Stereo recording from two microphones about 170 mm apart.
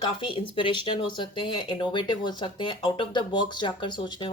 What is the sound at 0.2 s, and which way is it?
Speech, 30° left (ahead or behind).